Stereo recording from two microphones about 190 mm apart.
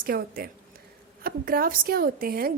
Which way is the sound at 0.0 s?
50° right (ahead or behind).